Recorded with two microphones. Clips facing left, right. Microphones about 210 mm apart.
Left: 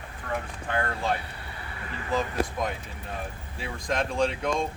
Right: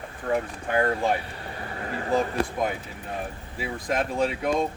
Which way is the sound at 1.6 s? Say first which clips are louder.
Right 7 dB; 45° right (ahead or behind).